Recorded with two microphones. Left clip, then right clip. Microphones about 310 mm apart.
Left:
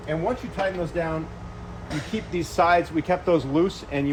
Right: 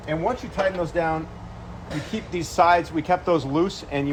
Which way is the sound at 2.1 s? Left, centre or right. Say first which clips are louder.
Right 2 dB; centre.